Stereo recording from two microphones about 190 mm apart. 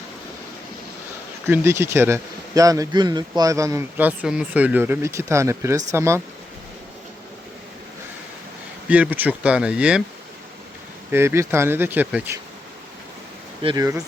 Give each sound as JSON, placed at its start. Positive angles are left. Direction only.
{"t": 1.5, "sound": "speech", "side_deg": -10}
{"t": 8.9, "sound": "speech", "side_deg": -10}
{"t": 11.1, "sound": "speech", "side_deg": -10}
{"t": 13.6, "sound": "speech", "side_deg": -25}